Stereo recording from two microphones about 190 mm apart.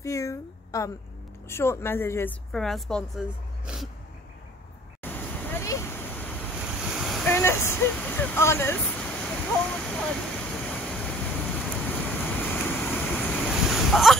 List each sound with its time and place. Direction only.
0.0 s a sound: 15° left (ahead or behind)
1.5 s speech: 15° left (ahead or behind)
2.5 s a woman's voice: centre (ahead or behind)
5.0 s vehicle: 10° left (ahead or behind)
6.8 s waves: centre (ahead or behind)
7.3 s a sound: 10° left (ahead or behind)
7.9 s speech: 5° left (ahead or behind)
8.8 s waterfall: 5° left (ahead or behind)